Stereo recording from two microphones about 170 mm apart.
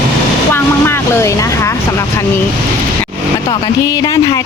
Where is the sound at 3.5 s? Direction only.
20° left (ahead or behind).